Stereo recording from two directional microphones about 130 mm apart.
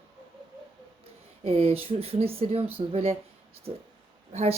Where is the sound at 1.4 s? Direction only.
50° right (ahead or behind).